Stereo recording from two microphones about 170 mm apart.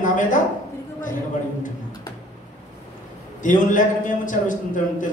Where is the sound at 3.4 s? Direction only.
50° left (ahead or behind).